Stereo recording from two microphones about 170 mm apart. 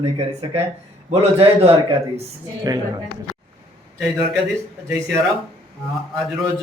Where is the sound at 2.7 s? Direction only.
20° right (ahead or behind).